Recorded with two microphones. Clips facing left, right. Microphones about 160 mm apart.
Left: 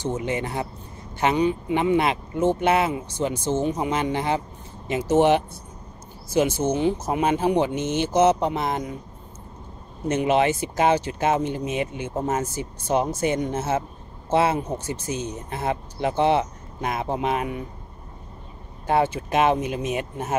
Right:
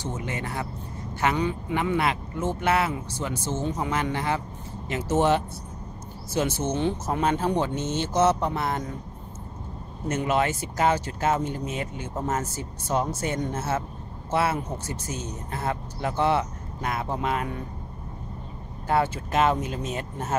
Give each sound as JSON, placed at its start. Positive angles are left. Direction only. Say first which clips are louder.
{"t": 0.0, "sound": "speech", "louder": "left 6 dB", "side_deg": 20}
{"t": 10.0, "sound": "speech", "louder": "left 4 dB", "side_deg": 20}
{"t": 18.9, "sound": "speech", "louder": "left 3 dB", "side_deg": 20}